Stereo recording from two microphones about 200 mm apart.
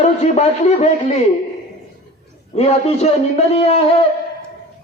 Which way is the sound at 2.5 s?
30° left (ahead or behind).